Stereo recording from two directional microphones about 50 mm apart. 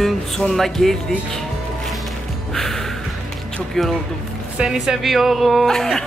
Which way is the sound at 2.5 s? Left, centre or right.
Centre.